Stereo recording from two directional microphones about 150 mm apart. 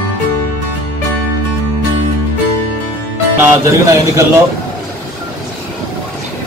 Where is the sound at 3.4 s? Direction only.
20° right (ahead or behind).